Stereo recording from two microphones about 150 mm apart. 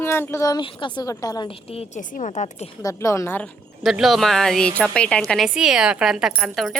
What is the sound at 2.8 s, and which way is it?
Speech, 20° left (ahead or behind).